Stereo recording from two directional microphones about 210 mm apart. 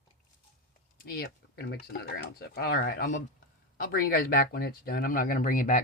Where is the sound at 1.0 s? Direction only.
45° left (ahead or behind).